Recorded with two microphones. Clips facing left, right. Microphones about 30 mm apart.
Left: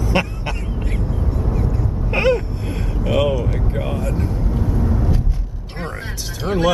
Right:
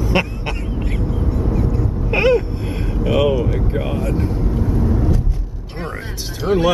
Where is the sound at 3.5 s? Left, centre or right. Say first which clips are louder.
Right 2 dB; centre.